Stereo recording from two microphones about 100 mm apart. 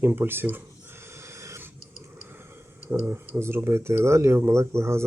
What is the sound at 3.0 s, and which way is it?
Speech, 25° right (ahead or behind).